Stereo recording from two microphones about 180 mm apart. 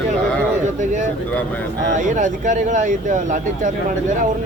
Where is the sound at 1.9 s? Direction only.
45° right (ahead or behind).